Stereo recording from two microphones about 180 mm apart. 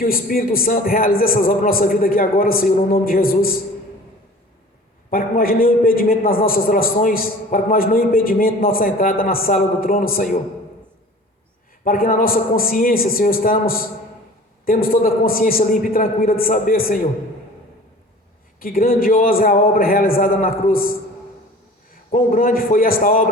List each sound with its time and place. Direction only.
0.0 s a man's voice: 55° left (ahead or behind)
5.1 s a man's voice: 55° left (ahead or behind)
11.9 s a man's voice: 55° left (ahead or behind)
18.6 s a man's voice: 55° left (ahead or behind)
22.1 s a man's voice: 50° left (ahead or behind)